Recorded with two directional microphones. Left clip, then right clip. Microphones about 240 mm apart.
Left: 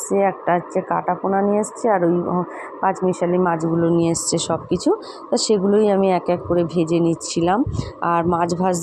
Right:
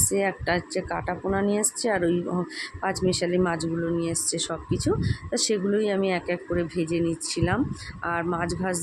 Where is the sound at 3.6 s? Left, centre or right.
Centre.